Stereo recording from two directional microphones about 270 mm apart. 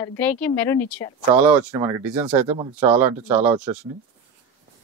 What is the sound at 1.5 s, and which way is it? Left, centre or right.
Speech, centre.